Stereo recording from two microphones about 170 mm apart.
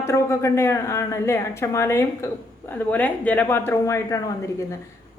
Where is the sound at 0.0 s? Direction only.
15° left (ahead or behind).